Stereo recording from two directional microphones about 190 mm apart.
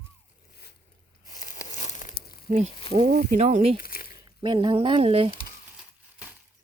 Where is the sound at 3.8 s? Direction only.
50° left (ahead or behind).